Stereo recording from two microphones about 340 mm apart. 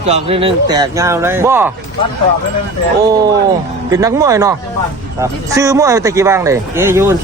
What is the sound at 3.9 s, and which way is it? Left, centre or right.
Speech, centre.